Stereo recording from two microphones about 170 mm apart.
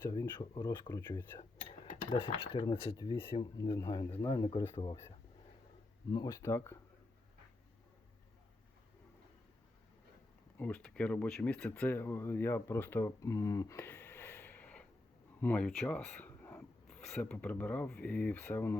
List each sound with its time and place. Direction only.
0.1 s speech: 15° left (ahead or behind)
1.8 s speech: 35° left (ahead or behind); by 4.8 s 15° left (ahead or behind)
6.1 s speech: 20° left (ahead or behind)
10.6 s speech: 5° left (ahead or behind)